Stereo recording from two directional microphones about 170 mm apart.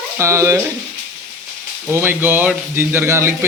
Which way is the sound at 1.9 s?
15° right (ahead or behind).